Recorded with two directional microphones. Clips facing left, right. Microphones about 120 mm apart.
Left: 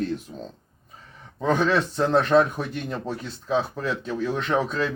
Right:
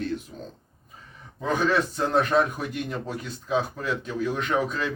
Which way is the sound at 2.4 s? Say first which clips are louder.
Left 3 dB; 35° left (ahead or behind).